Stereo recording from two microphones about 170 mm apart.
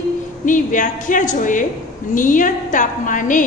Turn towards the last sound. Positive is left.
turn(degrees=50)  # may be behind; listen again after turning